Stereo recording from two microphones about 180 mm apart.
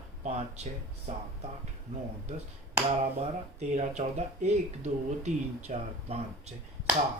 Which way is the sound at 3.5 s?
40° right (ahead or behind).